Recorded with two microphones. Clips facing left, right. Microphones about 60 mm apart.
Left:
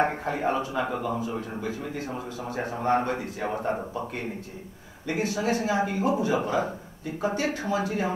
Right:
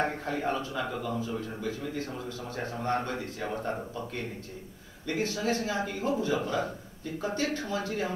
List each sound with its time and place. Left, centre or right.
0.0 s speech: centre